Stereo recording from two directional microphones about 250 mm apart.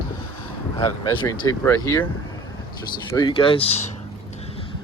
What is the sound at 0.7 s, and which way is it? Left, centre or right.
Speech, centre.